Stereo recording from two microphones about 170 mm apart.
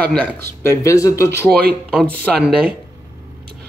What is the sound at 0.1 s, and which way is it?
A man's voice, 10° left (ahead or behind).